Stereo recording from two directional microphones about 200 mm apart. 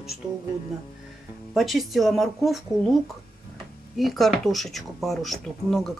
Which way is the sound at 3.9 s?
Centre (ahead or behind).